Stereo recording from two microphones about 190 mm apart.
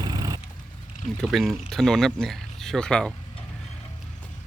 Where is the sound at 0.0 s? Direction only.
20° right (ahead or behind).